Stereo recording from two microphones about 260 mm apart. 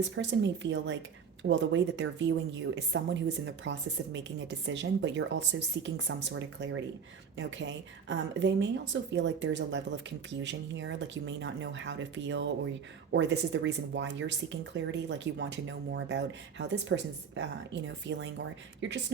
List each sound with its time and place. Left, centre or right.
0.0 s speech: right